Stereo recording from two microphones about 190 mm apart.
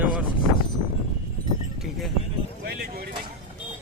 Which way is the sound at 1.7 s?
Centre (ahead or behind).